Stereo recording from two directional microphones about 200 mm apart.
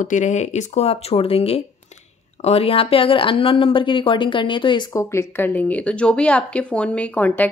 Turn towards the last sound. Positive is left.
turn(degrees=10)  # may be behind; listen again after turning